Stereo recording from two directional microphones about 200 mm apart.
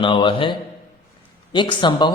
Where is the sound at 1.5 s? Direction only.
25° left (ahead or behind).